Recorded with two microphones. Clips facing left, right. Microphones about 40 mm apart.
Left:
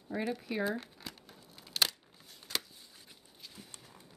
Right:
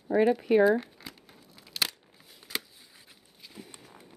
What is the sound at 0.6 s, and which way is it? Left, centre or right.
Crumpling, centre.